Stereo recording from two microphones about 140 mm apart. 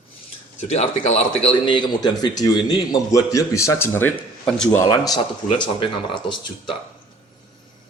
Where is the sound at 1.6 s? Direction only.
35° left (ahead or behind).